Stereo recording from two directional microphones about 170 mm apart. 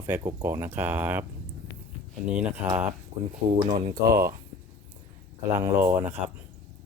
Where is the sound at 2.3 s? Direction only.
10° right (ahead or behind).